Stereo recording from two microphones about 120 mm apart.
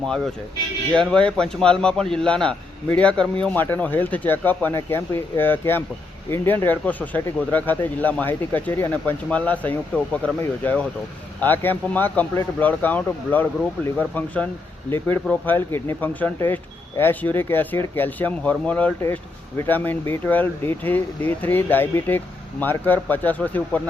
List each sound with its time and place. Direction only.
0.9 s a man's voice: 5° left (ahead or behind)